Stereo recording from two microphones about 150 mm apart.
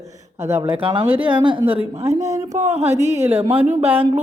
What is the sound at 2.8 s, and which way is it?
Speech, 15° right (ahead or behind).